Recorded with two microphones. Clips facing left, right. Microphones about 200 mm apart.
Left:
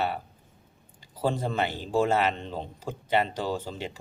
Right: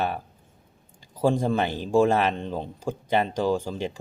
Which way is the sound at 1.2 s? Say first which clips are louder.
Right 5 dB; 10° right (ahead or behind).